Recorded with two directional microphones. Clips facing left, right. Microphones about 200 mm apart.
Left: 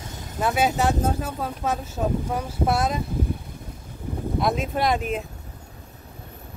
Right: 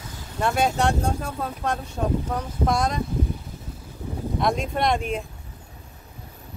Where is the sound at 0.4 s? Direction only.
5° left (ahead or behind).